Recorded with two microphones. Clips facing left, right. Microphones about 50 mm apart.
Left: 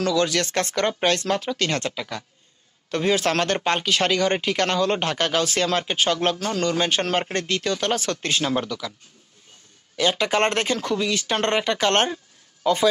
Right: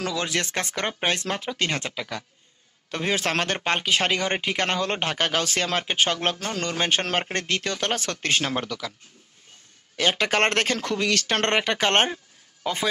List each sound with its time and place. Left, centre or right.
0.0 s speech: right
9.9 s speech: right